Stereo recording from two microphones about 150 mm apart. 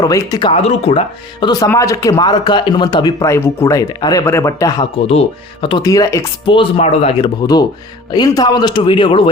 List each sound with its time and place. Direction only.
0.0 s a man's voice: 25° left (ahead or behind)
0.5 s a man's voice: 40° left (ahead or behind)
1.5 s a man's voice: 25° left (ahead or behind)
4.9 s a man's voice: 40° left (ahead or behind)
5.8 s a man's voice: 20° left (ahead or behind)
6.4 s a man's voice: 35° left (ahead or behind)
8.1 s a man's voice: 25° left (ahead or behind)